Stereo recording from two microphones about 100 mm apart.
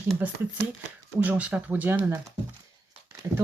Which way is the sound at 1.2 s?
15° right (ahead or behind).